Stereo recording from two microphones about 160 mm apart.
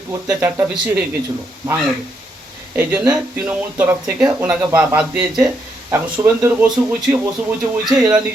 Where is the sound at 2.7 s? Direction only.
10° right (ahead or behind).